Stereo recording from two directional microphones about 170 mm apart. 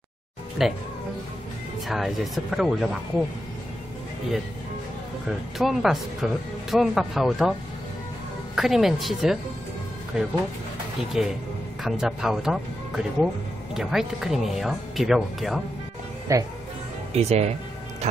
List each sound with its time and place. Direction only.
0.6 s speech: centre (ahead or behind)
1.9 s speech: centre (ahead or behind)
5.6 s speech: centre (ahead or behind)
8.5 s speech: centre (ahead or behind)
16.3 s speech: 20° right (ahead or behind)
17.1 s speech: 40° right (ahead or behind)